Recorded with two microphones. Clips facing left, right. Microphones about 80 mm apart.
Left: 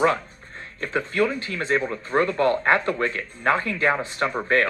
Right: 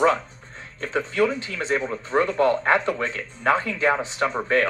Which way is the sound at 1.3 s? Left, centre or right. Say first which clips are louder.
Left 1 dB; left.